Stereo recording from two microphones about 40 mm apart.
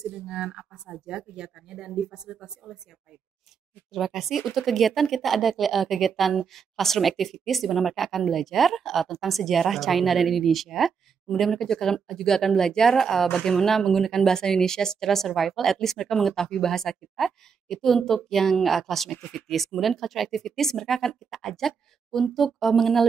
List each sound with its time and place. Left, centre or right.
0.0 s speech: centre
3.9 s speech: centre